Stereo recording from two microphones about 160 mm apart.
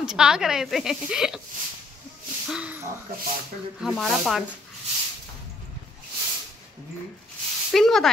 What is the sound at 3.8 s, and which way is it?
Speech, centre (ahead or behind).